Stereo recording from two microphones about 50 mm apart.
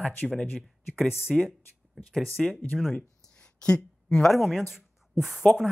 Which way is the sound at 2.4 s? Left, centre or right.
Left.